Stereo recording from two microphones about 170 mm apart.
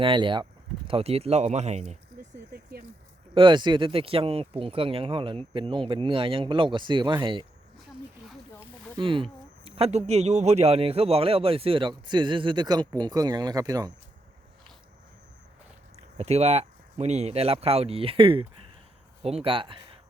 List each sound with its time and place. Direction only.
0.0 s speech: 30° right (ahead or behind)
3.3 s speech: 30° right (ahead or behind)
9.0 s speech: 30° right (ahead or behind)
16.1 s speech: 40° right (ahead or behind)